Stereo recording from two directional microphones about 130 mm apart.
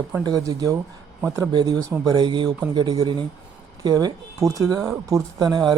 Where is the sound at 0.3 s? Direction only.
25° right (ahead or behind).